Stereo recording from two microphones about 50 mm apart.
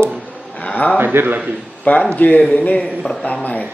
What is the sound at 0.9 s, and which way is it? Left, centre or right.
Speech, right.